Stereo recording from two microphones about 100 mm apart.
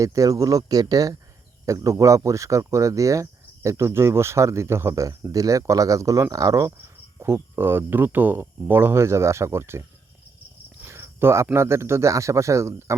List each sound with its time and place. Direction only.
0.0 s speech: 35° right (ahead or behind)
10.8 s cricket: 25° right (ahead or behind)
11.5 s speech: 25° right (ahead or behind)